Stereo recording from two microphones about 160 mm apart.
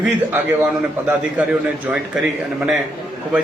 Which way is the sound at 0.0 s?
10° right (ahead or behind).